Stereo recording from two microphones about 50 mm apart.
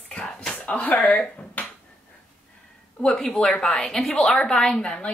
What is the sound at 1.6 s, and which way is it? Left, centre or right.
Finger snapping, left.